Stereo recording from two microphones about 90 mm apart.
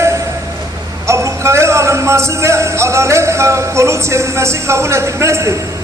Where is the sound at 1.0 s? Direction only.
30° right (ahead or behind).